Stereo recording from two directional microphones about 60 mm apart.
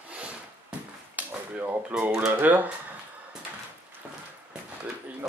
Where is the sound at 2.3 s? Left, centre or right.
Right.